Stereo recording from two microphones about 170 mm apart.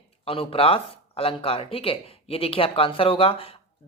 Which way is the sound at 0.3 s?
35° left (ahead or behind).